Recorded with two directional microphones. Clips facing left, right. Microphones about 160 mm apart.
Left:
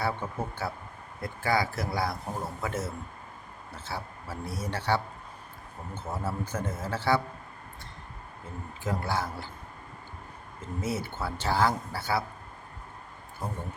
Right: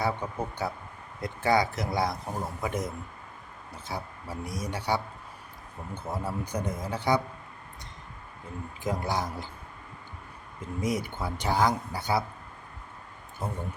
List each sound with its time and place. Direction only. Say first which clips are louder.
0.0 s a man's voice: right 1 dB; 15° right (ahead or behind)
8.8 s speech: right 1 dB; 15° right (ahead or behind)
10.6 s speech: right 2 dB; 15° right (ahead or behind)